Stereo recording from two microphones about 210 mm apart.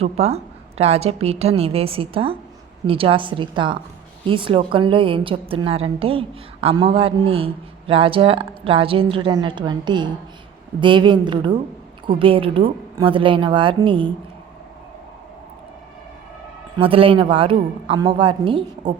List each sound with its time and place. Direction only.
0.0 s a woman's voice: 30° right (ahead or behind)
16.7 s a woman's voice: 25° right (ahead or behind)